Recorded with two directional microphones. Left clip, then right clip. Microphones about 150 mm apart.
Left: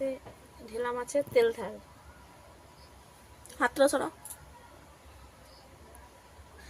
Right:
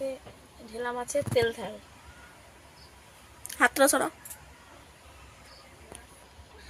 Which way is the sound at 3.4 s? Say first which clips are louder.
Right 3 dB; 15° right (ahead or behind).